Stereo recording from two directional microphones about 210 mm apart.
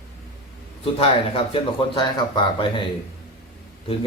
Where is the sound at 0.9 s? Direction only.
25° left (ahead or behind).